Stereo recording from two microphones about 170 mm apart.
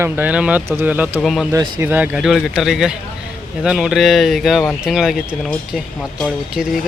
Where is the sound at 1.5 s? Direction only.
20° right (ahead or behind).